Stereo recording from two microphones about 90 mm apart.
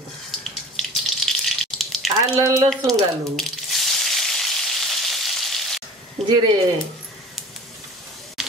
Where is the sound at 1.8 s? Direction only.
Centre (ahead or behind).